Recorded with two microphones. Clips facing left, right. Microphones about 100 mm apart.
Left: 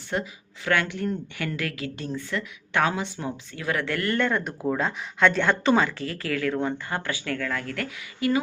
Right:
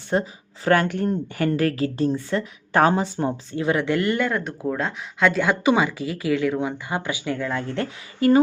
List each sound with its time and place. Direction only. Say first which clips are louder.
0.1 s a woman's voice: right 6 dB; 35° right (ahead or behind); by 4.2 s 20° right (ahead or behind)
4.2 s speech: right 1 dB; centre (ahead or behind); by 7.9 s 25° right (ahead or behind)
8.2 s a woman's voice: right 7 dB; 40° right (ahead or behind)